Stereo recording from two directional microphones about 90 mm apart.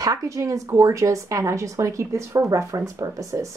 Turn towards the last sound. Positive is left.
turn(degrees=-35)  # may be behind; listen again after turning